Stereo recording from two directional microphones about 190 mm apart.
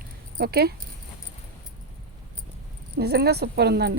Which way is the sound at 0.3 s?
55° right (ahead or behind).